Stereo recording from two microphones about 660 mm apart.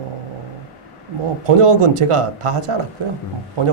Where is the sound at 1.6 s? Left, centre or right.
Right.